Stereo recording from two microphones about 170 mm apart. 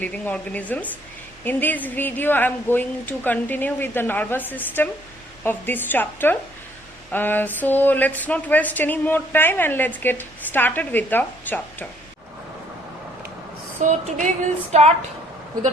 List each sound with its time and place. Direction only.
0.0 s a woman's voice: 10° left (ahead or behind)
13.8 s a sound: 50° right (ahead or behind)
14.7 s speech: 40° right (ahead or behind)